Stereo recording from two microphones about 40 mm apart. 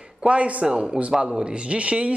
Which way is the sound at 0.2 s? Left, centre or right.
Right.